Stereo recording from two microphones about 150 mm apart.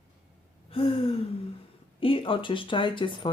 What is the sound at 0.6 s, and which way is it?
Gasp, 40° left (ahead or behind).